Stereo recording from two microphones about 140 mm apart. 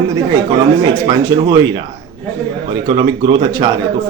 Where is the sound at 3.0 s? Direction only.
35° right (ahead or behind).